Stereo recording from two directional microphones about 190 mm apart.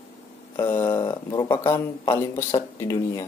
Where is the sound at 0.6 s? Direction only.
15° left (ahead or behind).